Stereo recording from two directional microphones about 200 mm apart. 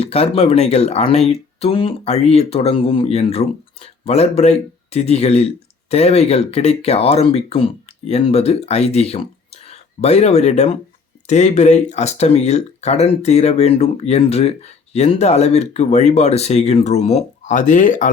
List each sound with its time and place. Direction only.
0.0 s speech: 30° left (ahead or behind)